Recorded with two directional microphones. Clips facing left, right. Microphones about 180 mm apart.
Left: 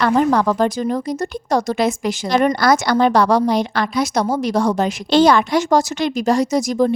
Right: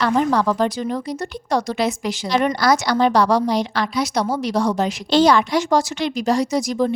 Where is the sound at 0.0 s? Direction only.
50° left (ahead or behind).